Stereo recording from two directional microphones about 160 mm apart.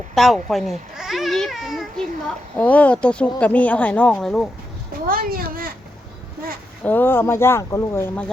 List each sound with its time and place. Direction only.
0.1 s speech: centre (ahead or behind)
5.0 s speech: 65° right (ahead or behind)
6.8 s speech: 10° left (ahead or behind)